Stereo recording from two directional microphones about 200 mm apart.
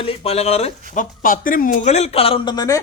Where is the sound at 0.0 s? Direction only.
30° left (ahead or behind).